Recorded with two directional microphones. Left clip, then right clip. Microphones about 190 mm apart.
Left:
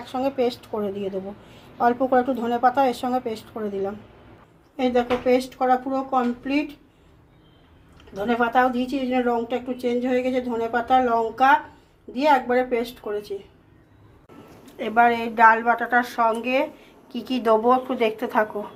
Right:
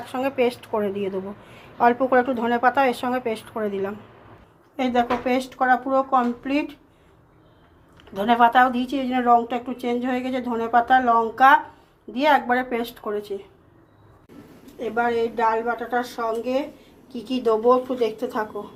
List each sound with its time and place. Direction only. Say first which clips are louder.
0.1 s a woman's voice: right 1 dB; 5° right (ahead or behind)
1.8 s a woman's voice: right 2 dB; 10° right (ahead or behind)
8.2 s a woman's voice: right 4 dB; 10° right (ahead or behind)
14.8 s a woman's voice: left 3 dB; 10° left (ahead or behind)
17.8 s speech: left 1 dB; 25° left (ahead or behind)